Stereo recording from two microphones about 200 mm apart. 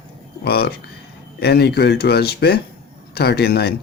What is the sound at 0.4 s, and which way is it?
Speech, 50° left (ahead or behind).